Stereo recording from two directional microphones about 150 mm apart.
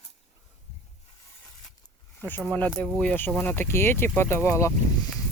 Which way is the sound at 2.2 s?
10° left (ahead or behind).